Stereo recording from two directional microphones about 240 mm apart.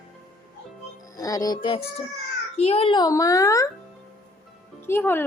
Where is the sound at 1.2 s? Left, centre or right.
Centre.